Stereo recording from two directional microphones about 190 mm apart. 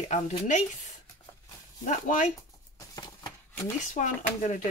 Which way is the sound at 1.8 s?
40° left (ahead or behind).